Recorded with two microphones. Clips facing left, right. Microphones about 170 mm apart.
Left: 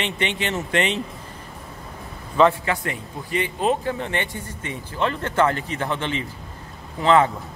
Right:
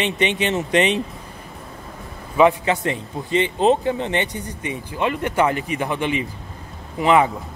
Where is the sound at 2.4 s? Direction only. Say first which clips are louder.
Right 2 dB; 20° right (ahead or behind).